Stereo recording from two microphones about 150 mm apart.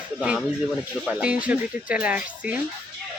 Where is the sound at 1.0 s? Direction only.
5° right (ahead or behind).